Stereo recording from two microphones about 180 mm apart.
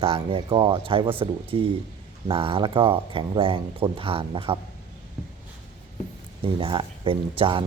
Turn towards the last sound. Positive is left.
turn(degrees=-30)  # may be behind; listen again after turning